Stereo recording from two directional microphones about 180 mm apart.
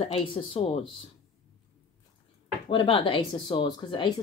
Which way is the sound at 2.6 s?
30° left (ahead or behind).